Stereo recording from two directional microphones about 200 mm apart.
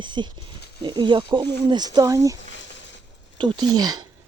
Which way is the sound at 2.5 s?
65° left (ahead or behind).